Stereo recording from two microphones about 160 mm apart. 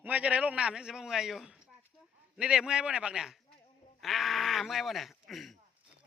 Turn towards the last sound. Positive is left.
turn(degrees=0)  # may be behind; listen again after turning